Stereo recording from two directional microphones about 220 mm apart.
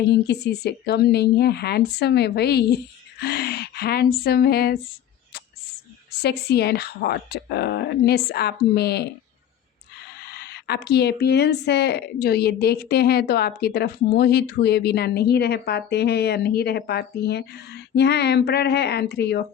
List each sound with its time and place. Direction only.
0.0 s speech: 50° left (ahead or behind)
6.1 s speech: 50° left (ahead or behind)
10.2 s speech: 45° left (ahead or behind)